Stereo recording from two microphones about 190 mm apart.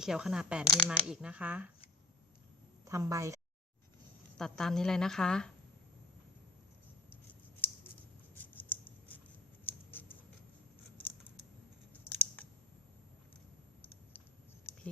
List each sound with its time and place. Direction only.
0.0 s a woman's voice: 5° right (ahead or behind)
2.8 s speech: 15° right (ahead or behind)
4.4 s a woman's voice: 5° left (ahead or behind)
8.4 s scissors: 10° left (ahead or behind)
12.0 s scissors: 10° left (ahead or behind)
14.7 s a sound: 15° left (ahead or behind)